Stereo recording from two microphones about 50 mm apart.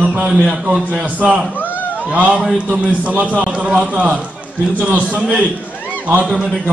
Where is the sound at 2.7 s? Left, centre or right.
Right.